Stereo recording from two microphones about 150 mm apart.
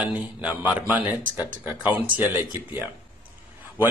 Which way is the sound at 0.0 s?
10° right (ahead or behind).